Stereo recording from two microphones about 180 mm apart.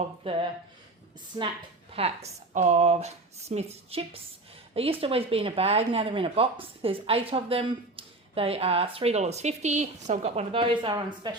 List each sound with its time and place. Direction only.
0.2 s speech: 30° right (ahead or behind)